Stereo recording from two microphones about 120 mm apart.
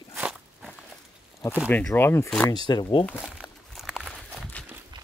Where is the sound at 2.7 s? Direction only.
40° left (ahead or behind).